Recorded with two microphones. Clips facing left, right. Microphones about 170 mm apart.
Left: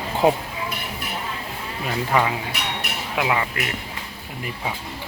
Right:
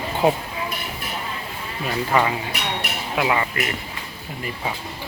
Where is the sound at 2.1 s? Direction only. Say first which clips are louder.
Right 1 dB; centre (ahead or behind).